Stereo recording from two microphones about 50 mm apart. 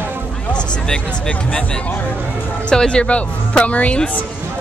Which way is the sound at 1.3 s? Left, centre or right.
Left.